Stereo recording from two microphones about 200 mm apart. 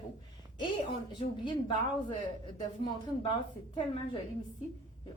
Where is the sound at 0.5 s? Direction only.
25° left (ahead or behind).